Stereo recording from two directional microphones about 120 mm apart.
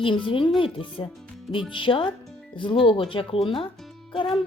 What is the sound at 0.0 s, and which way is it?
Speech, 45° left (ahead or behind).